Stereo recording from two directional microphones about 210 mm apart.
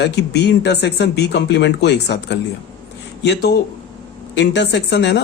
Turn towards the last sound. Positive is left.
turn(degrees=55)  # may be behind; listen again after turning